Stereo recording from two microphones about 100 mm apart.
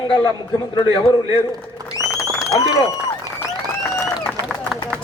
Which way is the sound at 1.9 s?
30° left (ahead or behind).